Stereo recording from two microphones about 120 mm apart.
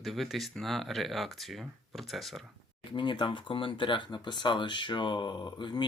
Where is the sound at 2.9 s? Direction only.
40° left (ahead or behind).